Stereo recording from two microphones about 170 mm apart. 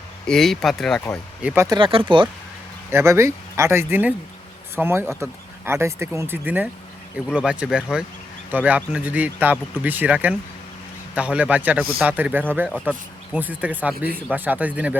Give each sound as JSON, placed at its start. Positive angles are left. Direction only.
{"t": 0.3, "sound": "speech", "side_deg": 0}
{"t": 1.6, "sound": "speech", "side_deg": -25}
{"t": 2.9, "sound": "speech", "side_deg": -15}